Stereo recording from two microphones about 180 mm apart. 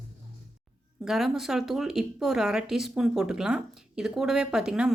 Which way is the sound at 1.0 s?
Centre (ahead or behind).